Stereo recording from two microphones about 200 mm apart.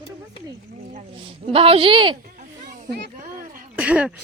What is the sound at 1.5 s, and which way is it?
Speech, 30° right (ahead or behind).